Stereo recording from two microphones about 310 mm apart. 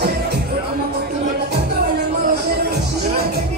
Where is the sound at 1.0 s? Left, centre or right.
Right.